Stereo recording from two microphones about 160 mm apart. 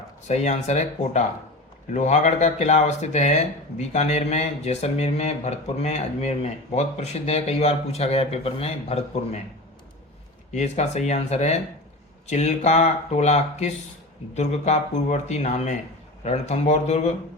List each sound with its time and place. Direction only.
0.3 s speech: 45° left (ahead or behind)
10.5 s speech: 45° left (ahead or behind)